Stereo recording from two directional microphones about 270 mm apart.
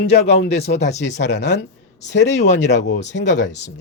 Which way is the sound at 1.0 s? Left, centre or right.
Left.